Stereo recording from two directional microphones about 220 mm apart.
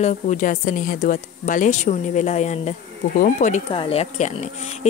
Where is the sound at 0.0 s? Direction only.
35° left (ahead or behind).